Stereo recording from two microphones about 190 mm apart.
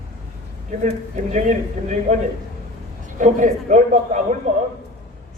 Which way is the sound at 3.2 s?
40° right (ahead or behind).